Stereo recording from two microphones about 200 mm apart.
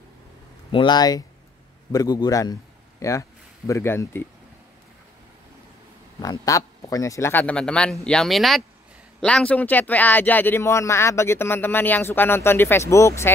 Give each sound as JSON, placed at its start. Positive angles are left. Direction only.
{"t": 0.7, "sound": "a man's voice", "side_deg": 25}
{"t": 6.2, "sound": "a man's voice", "side_deg": 15}